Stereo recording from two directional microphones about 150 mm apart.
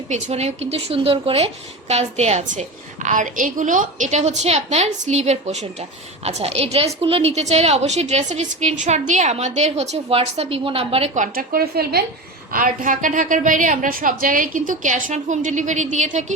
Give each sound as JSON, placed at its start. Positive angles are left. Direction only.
{"t": 0.1, "sound": "a woman's voice", "side_deg": -45}
{"t": 12.5, "sound": "a woman's voice", "side_deg": -65}